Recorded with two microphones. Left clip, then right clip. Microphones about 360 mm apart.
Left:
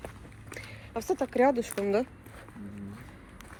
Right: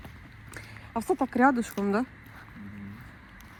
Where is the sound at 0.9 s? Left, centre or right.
Centre.